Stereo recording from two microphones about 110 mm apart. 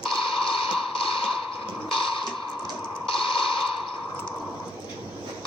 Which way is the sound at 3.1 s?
50° left (ahead or behind).